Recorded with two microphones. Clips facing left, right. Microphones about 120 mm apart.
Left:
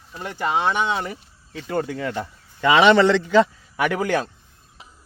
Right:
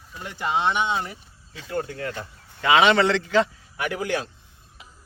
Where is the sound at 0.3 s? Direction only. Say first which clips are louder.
Left 2 dB; 55° left (ahead or behind); by 2.0 s 80° left.